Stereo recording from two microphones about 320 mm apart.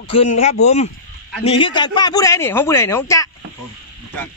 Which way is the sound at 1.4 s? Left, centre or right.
Centre.